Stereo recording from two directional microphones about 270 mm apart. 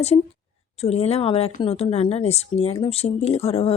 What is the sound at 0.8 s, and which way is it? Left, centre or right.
Speech, left.